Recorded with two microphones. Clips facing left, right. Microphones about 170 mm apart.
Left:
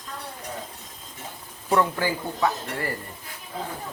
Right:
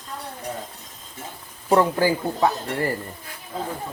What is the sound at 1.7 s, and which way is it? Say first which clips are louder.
Speech: right 4 dB; 35° right (ahead or behind).